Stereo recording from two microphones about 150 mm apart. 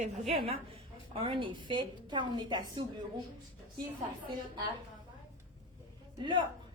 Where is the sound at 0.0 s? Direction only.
45° right (ahead or behind).